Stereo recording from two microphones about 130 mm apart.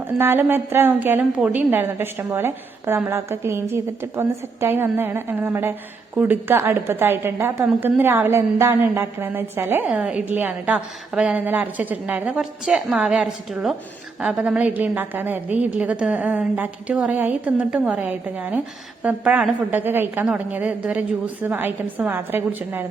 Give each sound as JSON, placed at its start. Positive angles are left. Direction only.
{"t": 0.2, "sound": "a woman's voice", "side_deg": -15}